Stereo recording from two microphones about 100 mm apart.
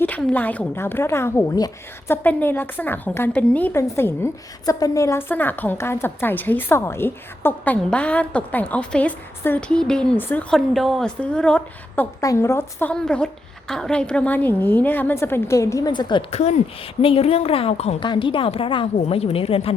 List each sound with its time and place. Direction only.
0.2 s a woman's voice: 15° left (ahead or behind)
3.8 s a woman's voice: 25° left (ahead or behind)
4.6 s a woman's voice: 35° left (ahead or behind)
5.3 s a woman's voice: 20° left (ahead or behind)
10.2 s a woman's voice: 20° left (ahead or behind)
10.5 s a woman's voice: centre (ahead or behind)
12.2 s a woman's voice: 30° left (ahead or behind)
12.8 s a woman's voice: 10° left (ahead or behind); by 15.9 s 30° left (ahead or behind)
15.9 s a woman's voice: 50° left (ahead or behind)
17.0 s a woman's voice: 75° left (ahead or behind); by 17.9 s 90° left
18.0 s a woman's voice: 55° left (ahead or behind); by 19.7 s 75° left (ahead or behind)